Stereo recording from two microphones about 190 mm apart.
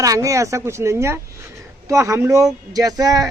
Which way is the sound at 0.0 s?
15° right (ahead or behind).